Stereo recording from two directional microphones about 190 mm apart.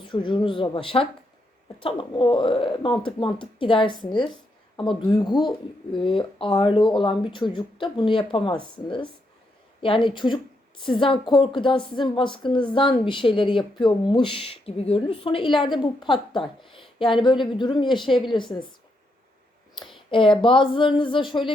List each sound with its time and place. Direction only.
0.0 s a woman's voice: 25° left (ahead or behind)
19.8 s a woman's voice: 25° left (ahead or behind)